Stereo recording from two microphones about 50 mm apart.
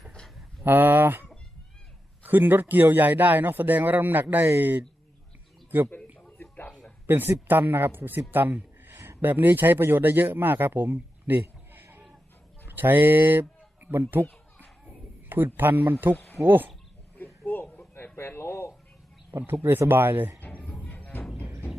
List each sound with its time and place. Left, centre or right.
0.6 s speech: right
6.1 s a sound: left
7.1 s a man's voice: right
12.6 s a sound: right
13.9 s speech: right
15.5 s speech: right
16.1 s speech: left
16.4 s speech: right
17.4 s a sound: left
19.9 s speech: right
20.6 s music: centre